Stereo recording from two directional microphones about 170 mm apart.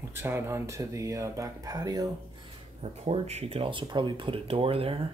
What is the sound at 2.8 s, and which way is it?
Speech, 40° right (ahead or behind).